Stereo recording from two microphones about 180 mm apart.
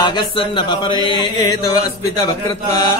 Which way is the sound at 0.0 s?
25° left (ahead or behind).